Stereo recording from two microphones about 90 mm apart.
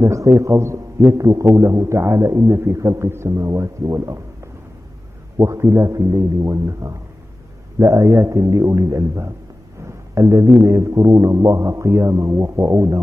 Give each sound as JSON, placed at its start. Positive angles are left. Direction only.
{"t": 0.0, "sound": "a man's voice", "side_deg": -35}
{"t": 5.4, "sound": "a man's voice", "side_deg": -30}